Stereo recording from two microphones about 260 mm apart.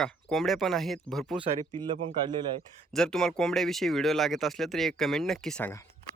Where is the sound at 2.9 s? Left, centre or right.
Centre.